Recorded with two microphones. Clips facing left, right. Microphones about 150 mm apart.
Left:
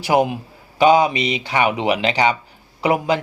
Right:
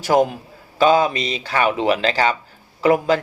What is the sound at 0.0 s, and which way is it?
Speech, 10° left (ahead or behind).